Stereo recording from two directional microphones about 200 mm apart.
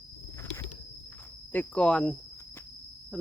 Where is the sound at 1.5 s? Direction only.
5° left (ahead or behind).